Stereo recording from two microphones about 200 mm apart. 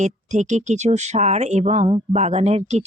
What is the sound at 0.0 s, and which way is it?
Speech, 35° right (ahead or behind).